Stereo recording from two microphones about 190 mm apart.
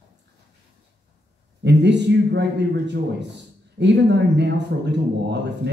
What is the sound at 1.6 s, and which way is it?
Speech, 65° right (ahead or behind).